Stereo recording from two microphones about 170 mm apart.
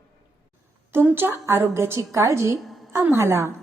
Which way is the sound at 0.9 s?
10° right (ahead or behind).